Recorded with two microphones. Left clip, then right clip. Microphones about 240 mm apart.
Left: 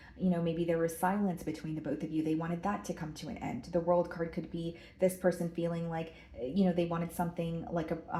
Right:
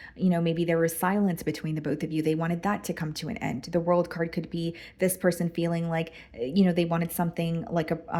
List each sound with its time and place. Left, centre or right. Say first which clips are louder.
0.2 s speech: right 6 dB; right